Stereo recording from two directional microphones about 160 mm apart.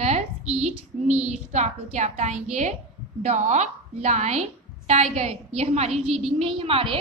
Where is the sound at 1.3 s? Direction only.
45° right (ahead or behind).